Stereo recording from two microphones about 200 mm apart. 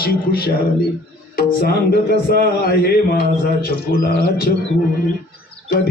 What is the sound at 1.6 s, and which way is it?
A man's voice, 50° left (ahead or behind).